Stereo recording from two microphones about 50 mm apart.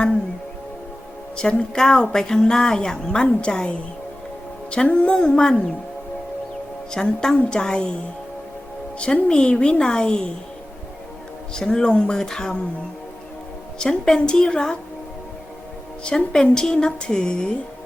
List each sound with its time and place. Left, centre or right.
1.4 s speech: centre
4.7 s a woman's voice: left
6.9 s speech: centre
9.2 s speech: left
11.5 s speech: centre
13.7 s speech: centre
16.0 s speech: centre